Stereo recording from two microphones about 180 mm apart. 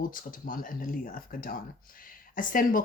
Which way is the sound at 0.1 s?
50° left (ahead or behind).